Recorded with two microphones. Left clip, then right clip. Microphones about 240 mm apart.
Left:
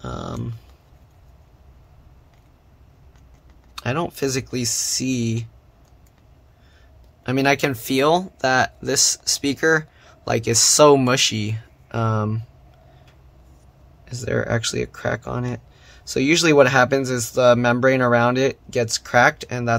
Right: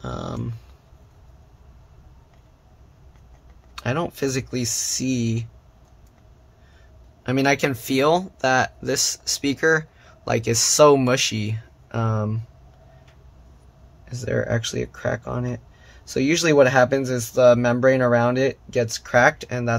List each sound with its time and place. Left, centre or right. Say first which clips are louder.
0.0 s a sound: even; centre
3.7 s speech: left 1 dB; centre
7.2 s speech: left 1 dB; centre
14.0 s speech: left 1 dB; centre